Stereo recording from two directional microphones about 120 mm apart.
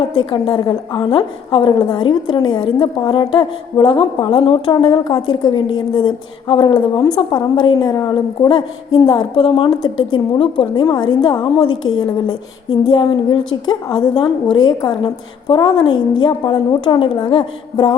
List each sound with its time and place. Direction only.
0.0 s a woman's voice: 45° left (ahead or behind)